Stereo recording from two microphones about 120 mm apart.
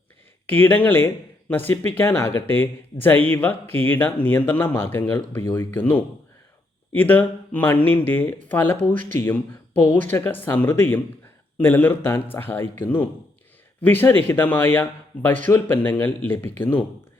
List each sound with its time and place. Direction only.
0.4 s speech: 15° left (ahead or behind)
13.8 s speech: 15° left (ahead or behind)